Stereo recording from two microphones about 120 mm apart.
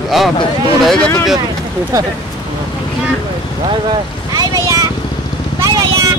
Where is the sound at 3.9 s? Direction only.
30° right (ahead or behind).